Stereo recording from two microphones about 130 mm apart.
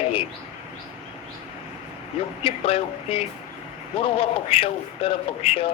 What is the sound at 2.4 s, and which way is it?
Speech, 45° left (ahead or behind).